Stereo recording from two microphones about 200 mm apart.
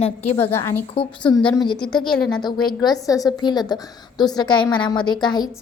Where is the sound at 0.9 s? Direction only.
25° left (ahead or behind).